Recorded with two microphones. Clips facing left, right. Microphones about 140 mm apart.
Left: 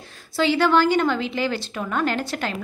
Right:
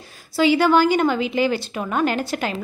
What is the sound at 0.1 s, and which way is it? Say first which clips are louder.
A woman's voice: right 4 dB; 5° right (ahead or behind).